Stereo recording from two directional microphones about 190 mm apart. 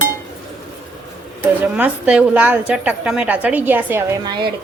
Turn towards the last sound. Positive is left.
turn(degrees=-20)  # may be behind; listen again after turning